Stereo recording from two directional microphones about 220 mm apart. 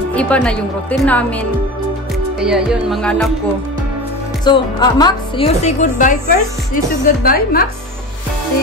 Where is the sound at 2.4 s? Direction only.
Centre (ahead or behind).